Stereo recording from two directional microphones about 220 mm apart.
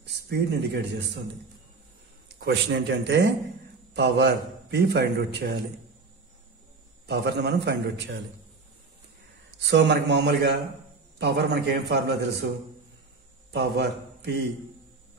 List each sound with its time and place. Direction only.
0.0 s a man's voice: 50° right (ahead or behind)
2.2 s a man's voice: 50° right (ahead or behind)
7.1 s a man's voice: 50° right (ahead or behind)
9.6 s a man's voice: 50° right (ahead or behind)
13.5 s a man's voice: 50° right (ahead or behind)